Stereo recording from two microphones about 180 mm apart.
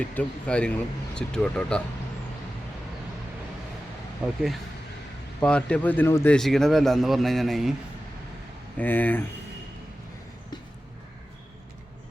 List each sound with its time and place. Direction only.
0.0 s a man's voice: 5° left (ahead or behind)
5.4 s speech: 5° left (ahead or behind)
6.3 s a man's voice: centre (ahead or behind)
8.8 s speech: 10° left (ahead or behind)